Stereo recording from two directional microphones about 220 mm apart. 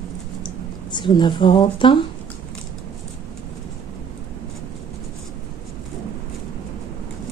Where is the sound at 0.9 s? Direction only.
20° left (ahead or behind).